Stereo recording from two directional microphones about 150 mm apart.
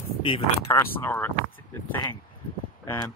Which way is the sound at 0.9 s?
15° left (ahead or behind).